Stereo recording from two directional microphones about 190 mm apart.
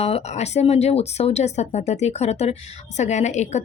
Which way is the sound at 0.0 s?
35° left (ahead or behind).